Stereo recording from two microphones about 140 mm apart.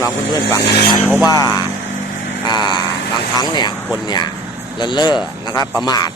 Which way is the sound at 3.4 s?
30° left (ahead or behind).